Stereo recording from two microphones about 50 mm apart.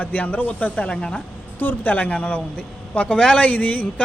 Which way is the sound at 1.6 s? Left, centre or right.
Left.